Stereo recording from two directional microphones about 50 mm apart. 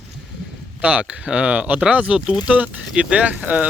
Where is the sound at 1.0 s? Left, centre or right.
Centre.